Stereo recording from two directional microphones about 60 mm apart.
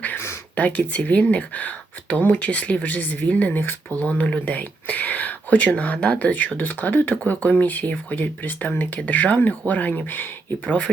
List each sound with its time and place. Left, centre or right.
0.5 s speech: left
4.2 s speech: left
10.7 s speech: left